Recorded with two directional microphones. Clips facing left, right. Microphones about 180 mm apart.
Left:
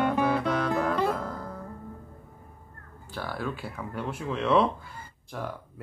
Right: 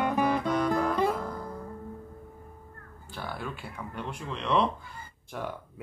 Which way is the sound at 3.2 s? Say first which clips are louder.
Left 4 dB; centre (ahead or behind).